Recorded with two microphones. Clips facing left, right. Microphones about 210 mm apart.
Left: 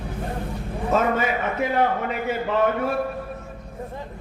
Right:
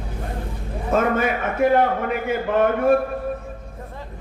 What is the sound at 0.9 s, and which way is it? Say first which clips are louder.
A man's voice: right 2 dB; 55° right (ahead or behind).